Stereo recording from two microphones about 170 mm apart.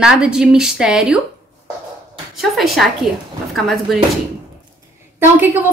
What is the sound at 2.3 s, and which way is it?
A woman's voice, centre (ahead or behind).